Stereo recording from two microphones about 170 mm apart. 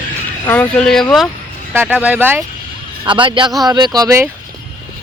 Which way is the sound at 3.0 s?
30° right (ahead or behind).